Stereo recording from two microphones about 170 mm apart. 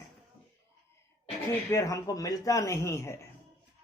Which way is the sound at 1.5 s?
15° left (ahead or behind).